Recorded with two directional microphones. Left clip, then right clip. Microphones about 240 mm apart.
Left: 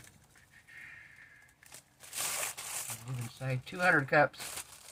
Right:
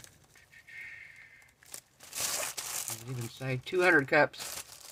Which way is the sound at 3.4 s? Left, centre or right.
Right.